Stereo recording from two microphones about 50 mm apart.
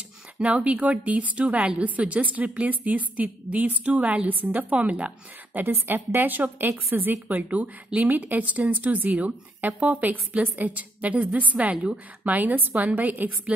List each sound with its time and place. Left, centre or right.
0.4 s a woman's voice: right